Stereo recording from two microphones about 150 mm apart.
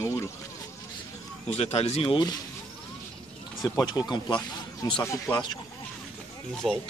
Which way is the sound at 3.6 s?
25° left (ahead or behind).